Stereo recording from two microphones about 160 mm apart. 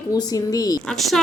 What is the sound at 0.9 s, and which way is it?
Speech, centre (ahead or behind).